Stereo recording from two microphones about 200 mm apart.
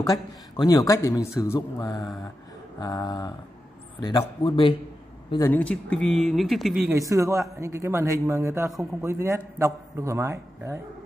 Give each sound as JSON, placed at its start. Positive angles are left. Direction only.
{"t": 0.0, "sound": "a man's voice", "side_deg": 20}
{"t": 5.5, "sound": "speech", "side_deg": 5}
{"t": 6.9, "sound": "speech", "side_deg": -15}